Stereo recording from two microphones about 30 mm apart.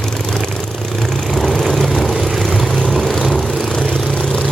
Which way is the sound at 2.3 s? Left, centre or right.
Centre.